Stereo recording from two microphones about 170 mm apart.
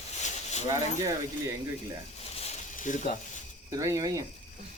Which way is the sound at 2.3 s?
40° left (ahead or behind).